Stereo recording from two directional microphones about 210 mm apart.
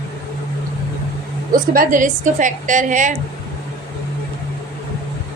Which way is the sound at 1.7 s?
40° right (ahead or behind).